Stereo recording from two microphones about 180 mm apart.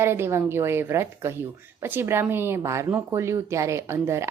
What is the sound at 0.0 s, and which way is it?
Speech, 15° right (ahead or behind).